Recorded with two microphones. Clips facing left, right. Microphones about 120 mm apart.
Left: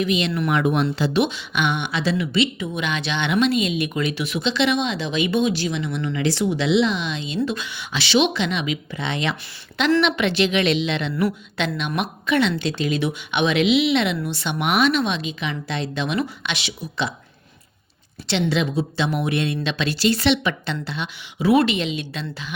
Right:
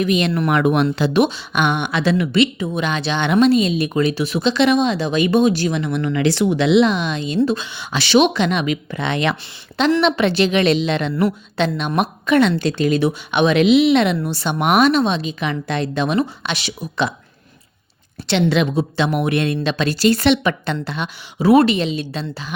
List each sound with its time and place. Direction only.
0.0 s speech: 50° right (ahead or behind); by 1.2 s 65° right (ahead or behind)
1.2 s speech: 45° right (ahead or behind)
2.6 s speech: 35° right (ahead or behind)
7.3 s a woman's voice: 30° right (ahead or behind)
7.9 s speech: 45° right (ahead or behind)
10.0 s a woman's voice: 35° right (ahead or behind)
18.3 s a woman's voice: 60° right (ahead or behind); by 22.5 s 35° right (ahead or behind)